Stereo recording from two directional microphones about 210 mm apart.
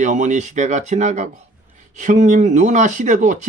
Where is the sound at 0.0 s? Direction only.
35° right (ahead or behind).